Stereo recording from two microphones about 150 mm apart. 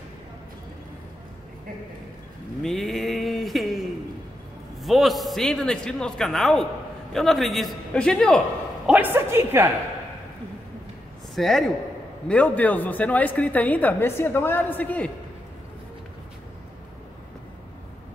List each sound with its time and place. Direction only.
2.6 s mantra: centre (ahead or behind)
4.8 s a man's voice: centre (ahead or behind)
9.1 s a woman's voice: 15° right (ahead or behind)
11.3 s a man's voice: centre (ahead or behind)